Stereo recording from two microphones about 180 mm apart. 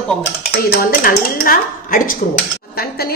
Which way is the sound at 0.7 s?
55° left (ahead or behind).